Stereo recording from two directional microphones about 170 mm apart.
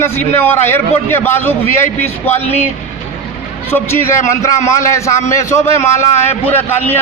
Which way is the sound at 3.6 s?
15° left (ahead or behind).